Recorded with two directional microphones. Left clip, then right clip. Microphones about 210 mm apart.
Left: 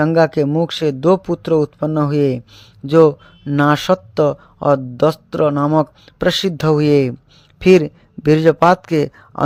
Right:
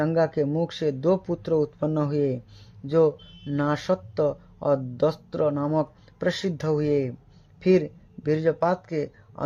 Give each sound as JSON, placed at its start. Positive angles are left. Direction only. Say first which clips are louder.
{"t": 0.0, "sound": "a man's voice", "louder": "left 9 dB", "side_deg": 25}